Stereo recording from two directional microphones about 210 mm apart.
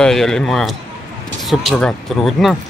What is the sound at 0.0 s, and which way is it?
Speech, centre (ahead or behind).